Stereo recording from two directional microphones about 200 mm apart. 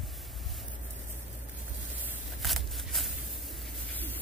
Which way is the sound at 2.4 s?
Centre (ahead or behind).